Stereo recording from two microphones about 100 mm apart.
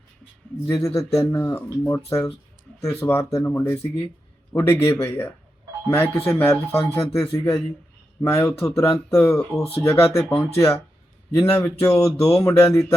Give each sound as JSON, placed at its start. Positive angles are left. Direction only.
{"t": 0.7, "sound": "speech", "side_deg": 30}